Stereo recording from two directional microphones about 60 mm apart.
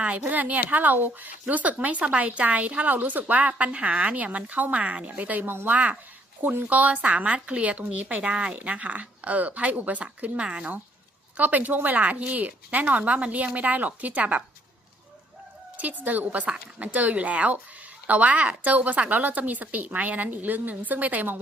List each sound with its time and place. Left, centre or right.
0.0 s speech: right
15.8 s speech: right